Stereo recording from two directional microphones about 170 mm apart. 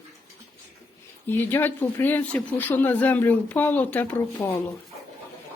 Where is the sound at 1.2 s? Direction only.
10° left (ahead or behind).